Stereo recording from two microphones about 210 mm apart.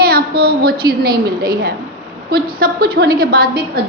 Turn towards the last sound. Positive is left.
turn(degrees=-45)  # may be behind; listen again after turning